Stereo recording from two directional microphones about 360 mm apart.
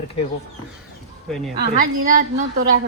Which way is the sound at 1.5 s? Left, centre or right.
Right.